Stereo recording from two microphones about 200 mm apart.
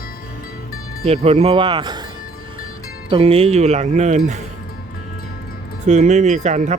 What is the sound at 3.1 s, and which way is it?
Speech, 30° right (ahead or behind).